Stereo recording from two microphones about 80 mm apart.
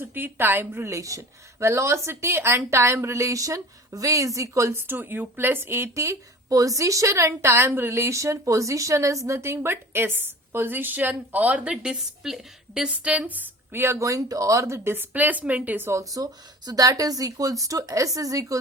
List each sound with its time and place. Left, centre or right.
0.0 s a woman's voice: right
13.8 s a woman's voice: right
16.0 s speech: right